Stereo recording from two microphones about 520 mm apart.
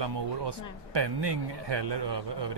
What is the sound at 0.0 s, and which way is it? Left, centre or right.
Speech, right.